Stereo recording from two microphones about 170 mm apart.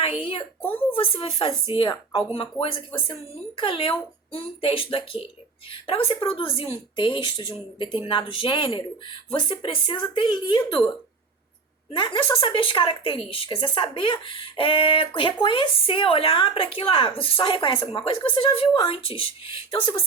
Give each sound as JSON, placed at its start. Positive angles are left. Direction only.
{"t": 0.2, "sound": "speech", "side_deg": 30}
{"t": 11.9, "sound": "speech", "side_deg": 30}